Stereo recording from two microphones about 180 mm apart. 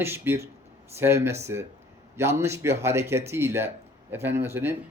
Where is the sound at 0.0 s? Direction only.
15° right (ahead or behind).